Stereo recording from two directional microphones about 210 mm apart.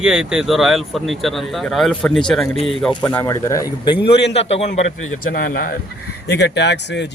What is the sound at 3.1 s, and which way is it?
Speech, 15° left (ahead or behind).